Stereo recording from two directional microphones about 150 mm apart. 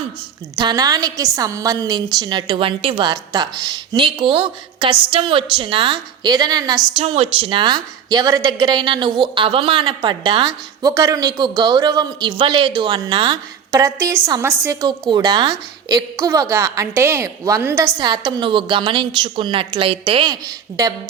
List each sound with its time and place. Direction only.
0.5 s a woman's voice: 30° right (ahead or behind)
6.9 s a woman's voice: 40° right (ahead or behind); by 17.9 s 15° right (ahead or behind)
18.0 s a woman's voice: 30° right (ahead or behind)